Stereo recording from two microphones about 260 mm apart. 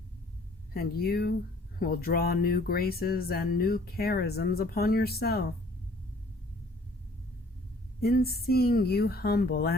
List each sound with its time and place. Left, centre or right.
0.7 s speech: left
8.0 s speech: left